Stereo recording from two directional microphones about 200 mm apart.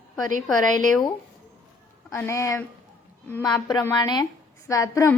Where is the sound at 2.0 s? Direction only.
10° left (ahead or behind).